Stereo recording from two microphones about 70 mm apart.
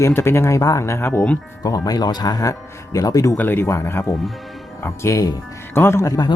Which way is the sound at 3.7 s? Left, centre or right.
Left.